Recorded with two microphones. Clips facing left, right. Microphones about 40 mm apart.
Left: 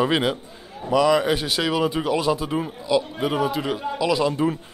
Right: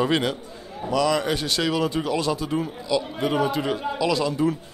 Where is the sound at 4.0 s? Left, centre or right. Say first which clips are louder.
Left 3 dB; centre.